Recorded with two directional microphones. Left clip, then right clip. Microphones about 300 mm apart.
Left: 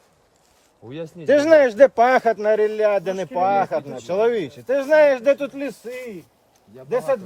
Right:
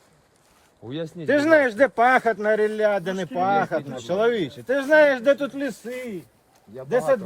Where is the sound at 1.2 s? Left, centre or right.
Left.